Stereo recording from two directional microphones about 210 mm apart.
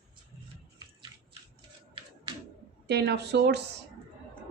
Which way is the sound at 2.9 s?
55° right (ahead or behind).